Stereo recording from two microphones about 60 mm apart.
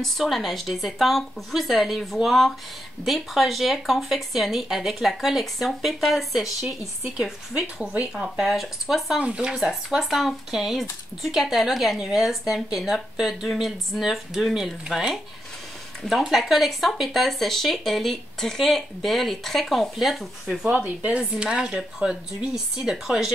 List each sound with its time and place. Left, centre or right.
0.0 s speech: centre
8.5 s speech: centre
9.2 s speech: centre
9.6 s speech: centre
20.7 s speech: right